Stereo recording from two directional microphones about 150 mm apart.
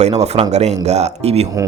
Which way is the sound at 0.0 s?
45° right (ahead or behind).